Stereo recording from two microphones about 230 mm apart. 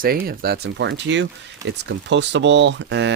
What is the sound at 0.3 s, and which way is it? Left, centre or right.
Speech, right.